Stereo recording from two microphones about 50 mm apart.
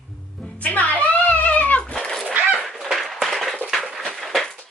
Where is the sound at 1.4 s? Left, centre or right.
Left.